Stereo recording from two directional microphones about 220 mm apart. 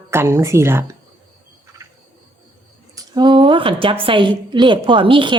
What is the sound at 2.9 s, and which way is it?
A woman's voice, 20° right (ahead or behind).